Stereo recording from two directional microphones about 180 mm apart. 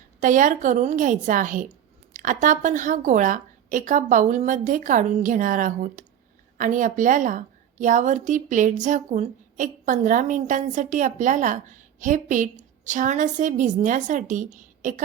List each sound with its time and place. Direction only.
0.2 s a woman's voice: 45° right (ahead or behind)